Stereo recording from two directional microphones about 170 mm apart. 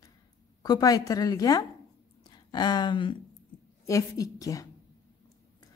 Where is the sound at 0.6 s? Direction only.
25° left (ahead or behind).